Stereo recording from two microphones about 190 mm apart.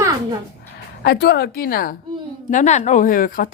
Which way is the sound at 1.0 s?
60° left (ahead or behind).